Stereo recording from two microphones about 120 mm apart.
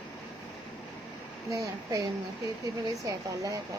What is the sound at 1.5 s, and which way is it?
Speech, 30° right (ahead or behind).